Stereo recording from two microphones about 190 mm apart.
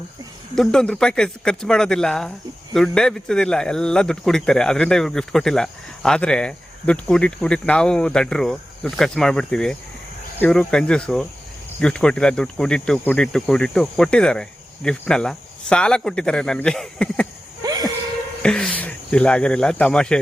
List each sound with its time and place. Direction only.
0.5 s speech: 5° left (ahead or behind)
17.6 s a sound: 20° right (ahead or behind)
18.4 s speech: 5° left (ahead or behind)